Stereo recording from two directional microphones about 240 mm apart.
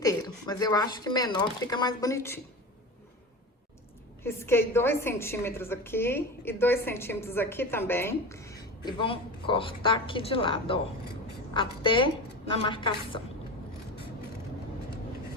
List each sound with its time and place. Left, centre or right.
0.0 s speech: centre
4.2 s a woman's voice: centre